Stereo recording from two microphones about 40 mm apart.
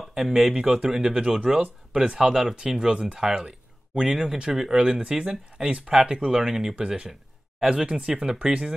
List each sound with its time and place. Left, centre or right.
0.1 s speech: centre
6.7 s speech: right